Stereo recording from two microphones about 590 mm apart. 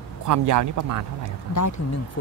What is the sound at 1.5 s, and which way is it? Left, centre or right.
Speech, left.